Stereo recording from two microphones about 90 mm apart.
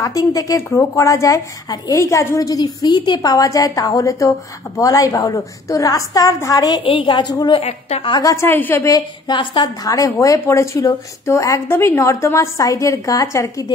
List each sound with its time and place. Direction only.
0.0 s a woman's voice: 40° left (ahead or behind)
6.8 s a woman's voice: 85° left; by 7.3 s 60° left (ahead or behind)
7.5 s a woman's voice: 70° left (ahead or behind)
8.2 s a woman's voice: 40° left (ahead or behind)
8.5 s a woman's voice: 25° left (ahead or behind)
9.3 s a woman's voice: 65° left (ahead or behind)
9.8 s a woman's voice: 40° left (ahead or behind)